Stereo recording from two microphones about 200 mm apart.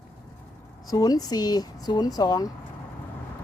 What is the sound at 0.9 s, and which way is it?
Speech, 20° left (ahead or behind).